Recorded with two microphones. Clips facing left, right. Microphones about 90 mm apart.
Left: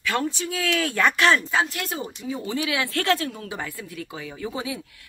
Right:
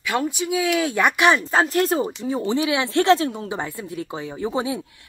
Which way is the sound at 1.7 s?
35° right (ahead or behind).